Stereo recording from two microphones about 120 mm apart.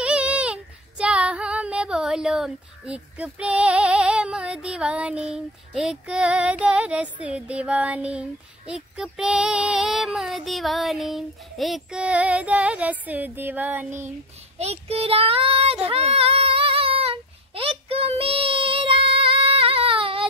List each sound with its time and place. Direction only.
0.0 s child singing: 10° right (ahead or behind)
14.6 s child singing: 60° right (ahead or behind)